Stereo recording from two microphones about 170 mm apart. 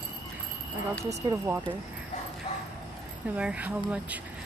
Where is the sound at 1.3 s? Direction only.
15° right (ahead or behind).